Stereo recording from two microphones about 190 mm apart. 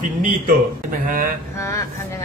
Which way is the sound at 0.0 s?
45° right (ahead or behind).